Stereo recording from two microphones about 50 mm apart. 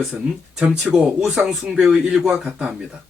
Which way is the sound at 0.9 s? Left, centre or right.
Centre.